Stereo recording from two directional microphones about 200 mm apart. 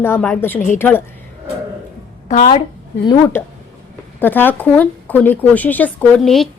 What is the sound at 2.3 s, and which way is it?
Speech, 30° left (ahead or behind).